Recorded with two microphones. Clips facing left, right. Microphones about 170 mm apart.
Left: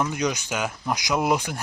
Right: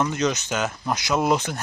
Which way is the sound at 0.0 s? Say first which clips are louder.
Right 2 dB; 10° left (ahead or behind).